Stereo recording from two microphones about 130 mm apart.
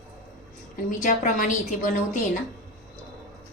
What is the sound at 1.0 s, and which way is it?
Speech, 85° left.